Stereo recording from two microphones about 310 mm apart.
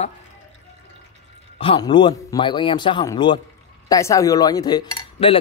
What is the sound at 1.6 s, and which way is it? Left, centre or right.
Cutlery, centre.